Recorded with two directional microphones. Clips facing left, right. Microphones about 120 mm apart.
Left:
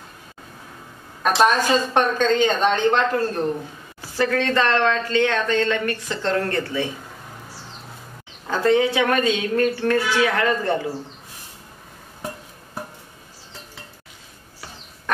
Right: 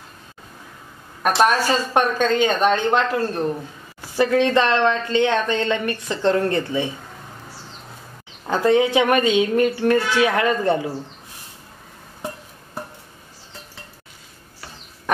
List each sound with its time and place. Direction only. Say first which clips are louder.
1.2 s a woman's voice: even; 10° right (ahead or behind)
8.5 s a woman's voice: right 1 dB; 20° right (ahead or behind)
15.1 s fowl: right 2 dB; 15° right (ahead or behind)